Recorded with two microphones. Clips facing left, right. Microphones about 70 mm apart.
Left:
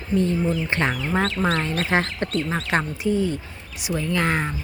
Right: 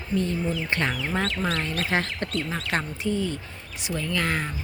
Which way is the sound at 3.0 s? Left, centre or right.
Centre.